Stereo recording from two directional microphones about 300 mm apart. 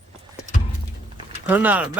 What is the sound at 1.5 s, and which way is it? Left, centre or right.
Speech, centre.